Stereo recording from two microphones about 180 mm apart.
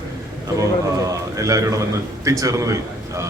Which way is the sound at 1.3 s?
20° right (ahead or behind).